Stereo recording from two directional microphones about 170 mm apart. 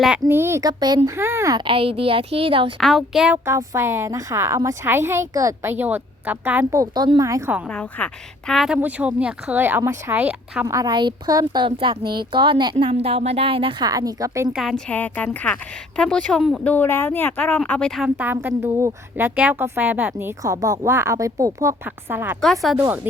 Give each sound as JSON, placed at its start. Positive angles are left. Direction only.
{"t": 0.0, "sound": "a woman's voice", "side_deg": -10}
{"t": 1.6, "sound": "a woman's voice", "side_deg": -35}
{"t": 2.8, "sound": "a woman's voice", "side_deg": 0}
{"t": 7.7, "sound": "a woman's voice", "side_deg": 10}
{"t": 10.8, "sound": "a woman's voice", "side_deg": -25}
{"t": 14.5, "sound": "speech", "side_deg": 0}
{"t": 18.2, "sound": "a woman's voice", "side_deg": -10}